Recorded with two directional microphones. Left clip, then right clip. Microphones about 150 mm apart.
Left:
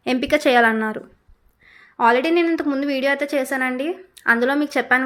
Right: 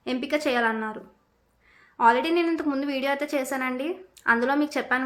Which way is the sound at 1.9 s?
30° left (ahead or behind).